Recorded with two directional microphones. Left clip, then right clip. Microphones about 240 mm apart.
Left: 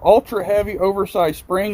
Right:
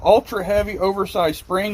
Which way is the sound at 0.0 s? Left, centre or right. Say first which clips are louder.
Left 2 dB; left.